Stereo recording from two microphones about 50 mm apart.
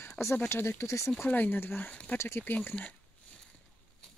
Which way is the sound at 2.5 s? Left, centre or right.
Left.